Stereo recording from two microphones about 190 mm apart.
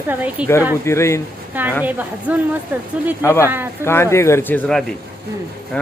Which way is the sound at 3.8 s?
15° left (ahead or behind).